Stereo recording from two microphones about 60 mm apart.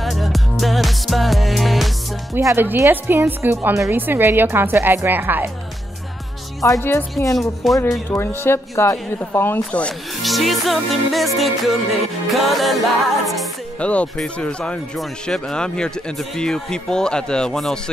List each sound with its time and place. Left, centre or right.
0.0 s music: centre
2.5 s a woman's voice: right
6.8 s speech: left
7.6 s music: centre
8.1 s a woman's voice: left
9.7 s speech: centre
10.2 s music: centre
13.7 s speech: left